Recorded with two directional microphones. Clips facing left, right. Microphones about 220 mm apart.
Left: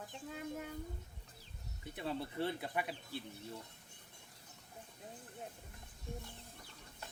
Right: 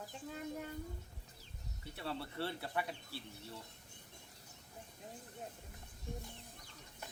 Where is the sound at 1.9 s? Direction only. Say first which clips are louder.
Left 3 dB; 15° left (ahead or behind).